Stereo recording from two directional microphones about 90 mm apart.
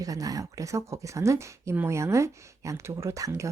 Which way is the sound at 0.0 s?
40° right (ahead or behind).